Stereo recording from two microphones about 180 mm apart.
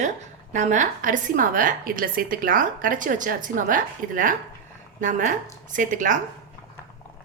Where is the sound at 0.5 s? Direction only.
45° right (ahead or behind).